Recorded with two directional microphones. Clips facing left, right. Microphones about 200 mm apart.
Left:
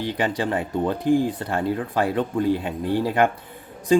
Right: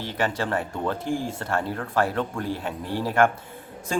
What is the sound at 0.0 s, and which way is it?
Speech, 15° left (ahead or behind).